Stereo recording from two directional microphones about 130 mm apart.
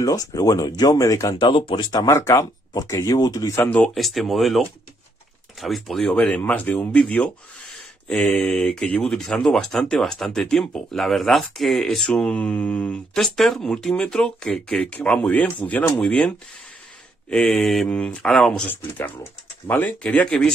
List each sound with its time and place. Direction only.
0.0 s speech: 25° left (ahead or behind)
1.4 s speech: 40° left (ahead or behind); by 3.9 s 15° left (ahead or behind)
3.9 s speech: centre (ahead or behind)